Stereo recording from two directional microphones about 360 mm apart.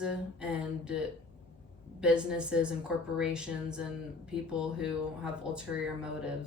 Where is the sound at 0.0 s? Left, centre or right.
Centre.